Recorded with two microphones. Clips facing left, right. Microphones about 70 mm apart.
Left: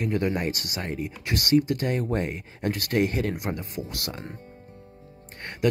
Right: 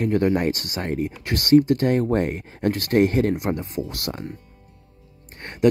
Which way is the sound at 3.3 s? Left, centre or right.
Right.